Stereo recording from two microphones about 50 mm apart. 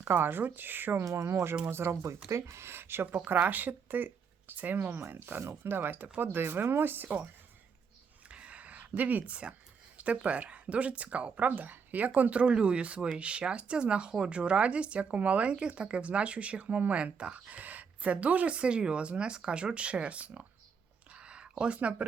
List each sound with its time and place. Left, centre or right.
0.1 s speech: right
0.9 s speech: right
1.6 s speech: right
3.4 s speech: right
5.3 s speech: right
8.3 s a sound: right
10.0 s speech: right
21.1 s a sound: right
21.6 s speech: right